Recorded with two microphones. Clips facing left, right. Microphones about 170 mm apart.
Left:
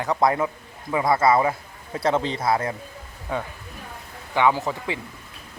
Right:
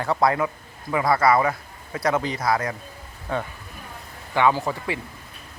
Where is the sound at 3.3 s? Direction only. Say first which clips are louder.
Right 1 dB; 15° left (ahead or behind).